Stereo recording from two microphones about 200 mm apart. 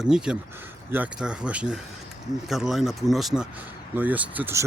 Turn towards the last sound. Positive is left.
turn(degrees=-10)  # may be behind; listen again after turning